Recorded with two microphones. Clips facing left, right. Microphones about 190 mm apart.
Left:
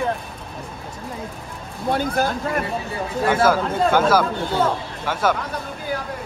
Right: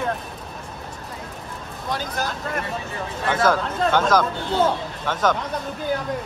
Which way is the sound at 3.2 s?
10° left (ahead or behind).